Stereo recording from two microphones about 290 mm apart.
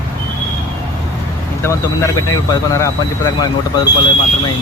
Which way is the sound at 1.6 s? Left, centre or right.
Centre.